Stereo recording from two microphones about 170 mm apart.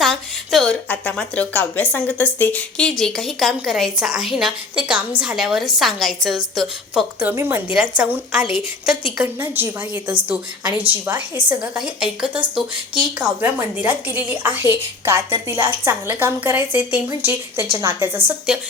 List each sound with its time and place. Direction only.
0.0 s a woman's voice: centre (ahead or behind)
10.8 s a woman's voice: 10° right (ahead or behind)
18.3 s speech: 5° right (ahead or behind)